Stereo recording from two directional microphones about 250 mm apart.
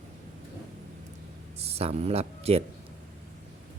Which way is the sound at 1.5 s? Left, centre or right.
Right.